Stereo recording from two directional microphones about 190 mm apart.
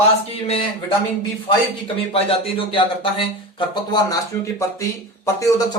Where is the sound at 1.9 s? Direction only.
30° left (ahead or behind).